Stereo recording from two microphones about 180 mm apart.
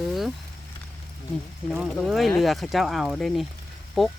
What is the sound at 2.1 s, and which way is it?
Speech, centre (ahead or behind).